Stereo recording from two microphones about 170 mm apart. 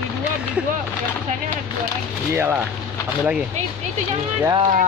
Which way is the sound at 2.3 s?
10° right (ahead or behind).